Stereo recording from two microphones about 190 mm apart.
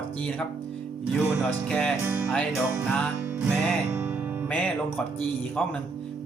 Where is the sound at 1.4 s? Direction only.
5° left (ahead or behind).